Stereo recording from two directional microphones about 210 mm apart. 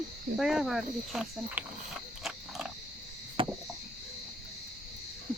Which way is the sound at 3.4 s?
25° right (ahead or behind).